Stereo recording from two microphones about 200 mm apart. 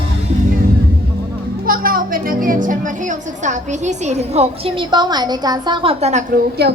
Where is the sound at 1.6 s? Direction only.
45° right (ahead or behind).